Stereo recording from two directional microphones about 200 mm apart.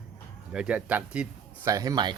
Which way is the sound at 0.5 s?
5° right (ahead or behind).